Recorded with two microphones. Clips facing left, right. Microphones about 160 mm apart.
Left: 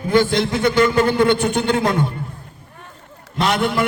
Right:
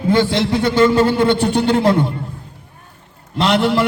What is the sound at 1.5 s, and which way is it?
Speech, 50° left (ahead or behind).